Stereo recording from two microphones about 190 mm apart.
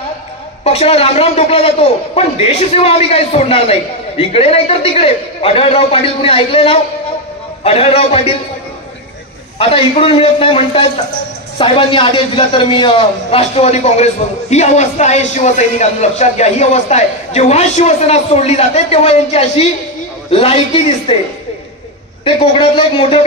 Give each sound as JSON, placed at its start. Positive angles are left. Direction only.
{"t": 0.7, "sound": "a man's voice", "side_deg": 30}
{"t": 9.6, "sound": "a man's voice", "side_deg": 30}
{"t": 22.2, "sound": "a man's voice", "side_deg": 25}